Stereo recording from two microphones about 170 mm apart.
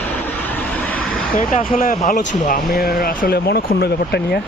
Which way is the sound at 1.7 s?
50° left (ahead or behind).